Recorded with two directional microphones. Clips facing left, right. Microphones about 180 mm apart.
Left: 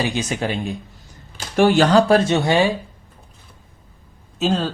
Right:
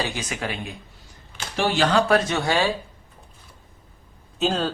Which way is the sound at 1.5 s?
50° left (ahead or behind).